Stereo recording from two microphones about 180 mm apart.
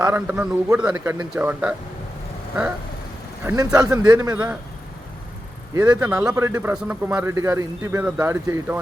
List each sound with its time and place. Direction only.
0.0 s a man's voice: 10° right (ahead or behind)
0.9 s a man's voice: 20° right (ahead or behind)
1.3 s a man's voice: 10° right (ahead or behind)
3.4 s speech: 20° right (ahead or behind)
5.7 s a man's voice: 20° right (ahead or behind)